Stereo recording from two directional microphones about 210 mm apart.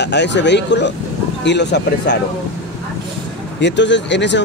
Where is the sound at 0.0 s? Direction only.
55° left (ahead or behind).